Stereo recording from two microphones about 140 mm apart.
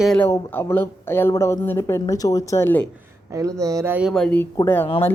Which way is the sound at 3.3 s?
25° right (ahead or behind).